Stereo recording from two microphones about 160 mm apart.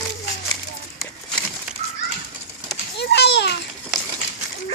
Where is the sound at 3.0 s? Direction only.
90° left.